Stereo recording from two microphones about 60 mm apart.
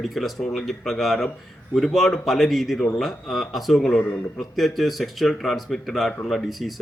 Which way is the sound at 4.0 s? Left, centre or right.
Left.